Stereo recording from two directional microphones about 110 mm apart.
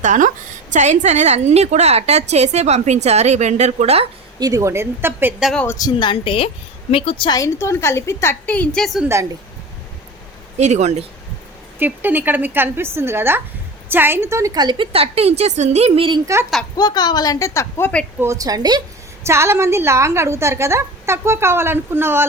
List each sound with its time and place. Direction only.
0.8 s a woman's voice: 90° right
4.4 s a woman's voice: 35° right (ahead or behind)
5.6 s a woman's voice: 35° left (ahead or behind)
6.1 s a woman's voice: 55° left (ahead or behind)
7.3 s a woman's voice: 30° left (ahead or behind); by 9.0 s centre (ahead or behind)
10.6 s speech: 90° right
11.8 s a woman's voice: 20° right (ahead or behind); by 14.8 s 40° right (ahead or behind)
14.9 s a woman's voice: 60° right (ahead or behind)
16.2 s a woman's voice: 25° right (ahead or behind)
16.7 s a woman's voice: 40° left (ahead or behind)
18.2 s a woman's voice: 30° right (ahead or behind)
19.2 s a woman's voice: 25° right (ahead or behind)